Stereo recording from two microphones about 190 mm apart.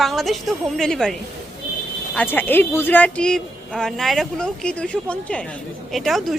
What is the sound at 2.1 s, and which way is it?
A woman's voice, 10° left (ahead or behind).